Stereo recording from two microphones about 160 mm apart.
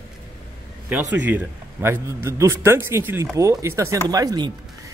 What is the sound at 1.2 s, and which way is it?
Speech, 10° right (ahead or behind).